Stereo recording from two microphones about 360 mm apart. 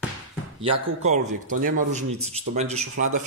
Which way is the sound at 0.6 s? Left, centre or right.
Centre.